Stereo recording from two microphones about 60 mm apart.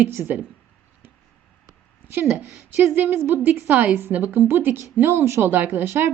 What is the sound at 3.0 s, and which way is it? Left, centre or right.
A woman's voice, right.